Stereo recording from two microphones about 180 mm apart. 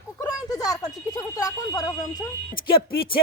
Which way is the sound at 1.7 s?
20° left (ahead or behind).